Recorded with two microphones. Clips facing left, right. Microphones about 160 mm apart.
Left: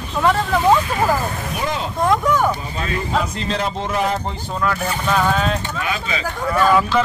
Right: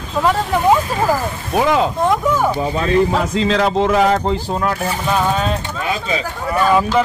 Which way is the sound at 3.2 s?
90° right.